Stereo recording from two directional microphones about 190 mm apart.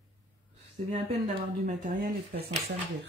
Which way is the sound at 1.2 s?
40° right (ahead or behind).